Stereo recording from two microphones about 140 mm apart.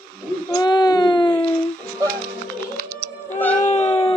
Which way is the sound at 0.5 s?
30° left (ahead or behind).